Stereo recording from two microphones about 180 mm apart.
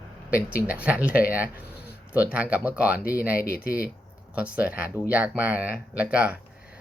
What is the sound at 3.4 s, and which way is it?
Speech, 55° left (ahead or behind).